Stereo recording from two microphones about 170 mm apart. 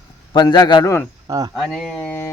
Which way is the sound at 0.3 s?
25° left (ahead or behind).